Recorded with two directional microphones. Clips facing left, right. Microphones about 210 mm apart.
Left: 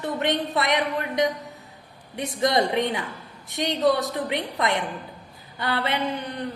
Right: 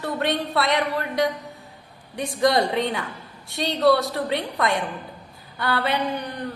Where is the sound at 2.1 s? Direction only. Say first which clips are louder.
Right 2 dB; 20° left (ahead or behind).